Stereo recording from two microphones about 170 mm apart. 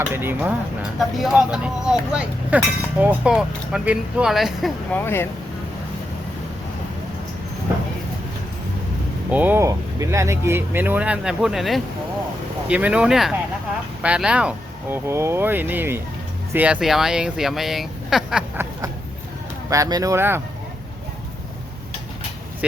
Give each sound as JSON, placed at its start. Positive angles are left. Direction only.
{"t": 0.1, "sound": "speech", "side_deg": -10}
{"t": 4.9, "sound": "speech", "side_deg": 15}
{"t": 9.3, "sound": "speech", "side_deg": -10}